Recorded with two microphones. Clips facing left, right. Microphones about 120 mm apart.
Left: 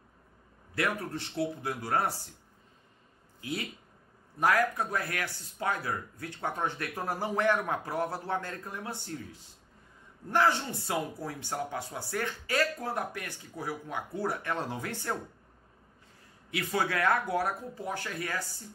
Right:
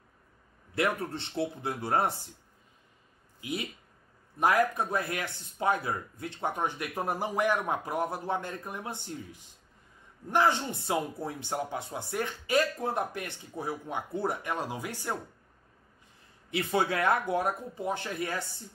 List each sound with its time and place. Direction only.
0.7 s speech: 25° right (ahead or behind)
3.3 s speech: 20° right (ahead or behind)
16.4 s speech: 25° right (ahead or behind)